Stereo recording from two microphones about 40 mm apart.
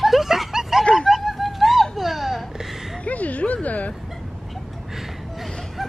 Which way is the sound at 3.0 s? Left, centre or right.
Left.